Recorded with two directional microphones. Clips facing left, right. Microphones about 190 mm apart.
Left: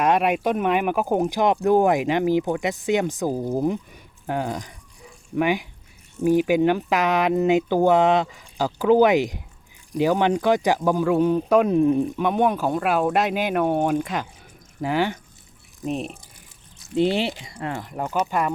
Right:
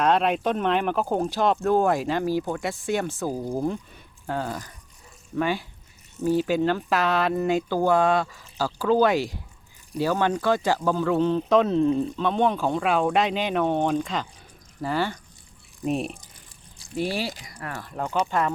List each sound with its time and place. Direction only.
0.0 s speech: 10° left (ahead or behind)
15.8 s speech: centre (ahead or behind)
16.7 s speech: 25° left (ahead or behind)